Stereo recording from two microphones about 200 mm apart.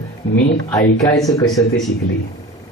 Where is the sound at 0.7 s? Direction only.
15° left (ahead or behind).